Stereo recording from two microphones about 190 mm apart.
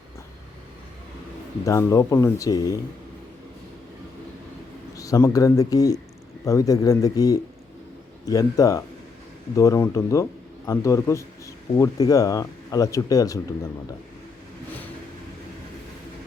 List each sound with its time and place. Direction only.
1.6 s speech: 15° left (ahead or behind)
4.9 s speech: 15° left (ahead or behind)